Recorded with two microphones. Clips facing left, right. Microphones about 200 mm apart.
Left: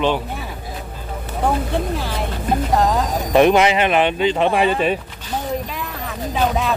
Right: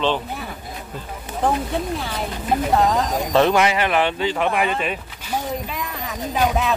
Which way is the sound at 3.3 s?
20° left (ahead or behind).